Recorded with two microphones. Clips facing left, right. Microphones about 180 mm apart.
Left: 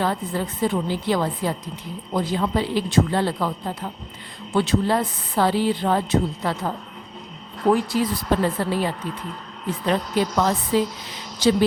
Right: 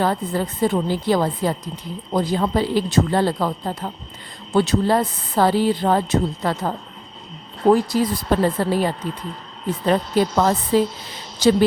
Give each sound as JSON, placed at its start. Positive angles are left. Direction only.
{"t": 0.0, "sound": "speech", "side_deg": -40}
{"t": 4.5, "sound": "speech", "side_deg": -40}
{"t": 7.6, "sound": "speech", "side_deg": -35}